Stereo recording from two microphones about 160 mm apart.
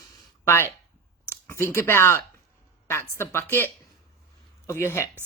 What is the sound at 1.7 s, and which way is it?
Speech, 15° left (ahead or behind).